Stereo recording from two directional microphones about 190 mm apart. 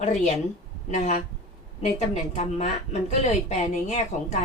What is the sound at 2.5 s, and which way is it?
Speech, 35° left (ahead or behind).